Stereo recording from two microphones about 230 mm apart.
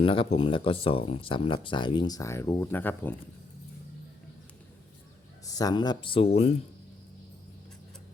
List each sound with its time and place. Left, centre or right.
0.0 s speech: left
5.5 s speech: centre